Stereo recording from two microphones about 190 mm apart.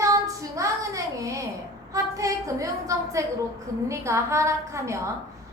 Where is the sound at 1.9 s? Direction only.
15° right (ahead or behind).